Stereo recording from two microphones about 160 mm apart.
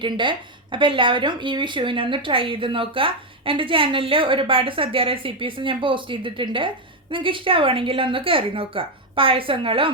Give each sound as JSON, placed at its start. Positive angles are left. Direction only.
{"t": 0.0, "sound": "a woman's voice", "side_deg": -30}